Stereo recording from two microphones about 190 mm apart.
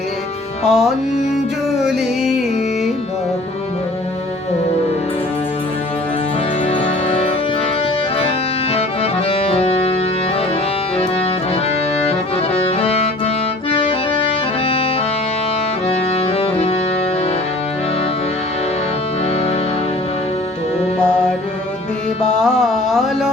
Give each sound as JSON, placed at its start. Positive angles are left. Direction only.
{"t": 0.6, "sound": "music", "side_deg": 0}
{"t": 6.7, "sound": "music", "side_deg": 35}
{"t": 9.3, "sound": "accordion", "side_deg": 30}
{"t": 12.6, "sound": "accordion", "side_deg": 30}
{"t": 15.9, "sound": "music", "side_deg": 35}
{"t": 21.0, "sound": "mantra", "side_deg": 5}
{"t": 22.2, "sound": "music", "side_deg": 0}